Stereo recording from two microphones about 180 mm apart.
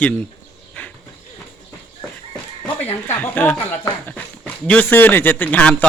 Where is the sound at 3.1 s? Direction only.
10° left (ahead or behind).